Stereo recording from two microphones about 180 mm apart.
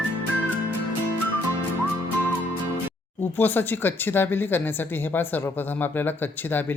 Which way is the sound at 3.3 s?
10° left (ahead or behind).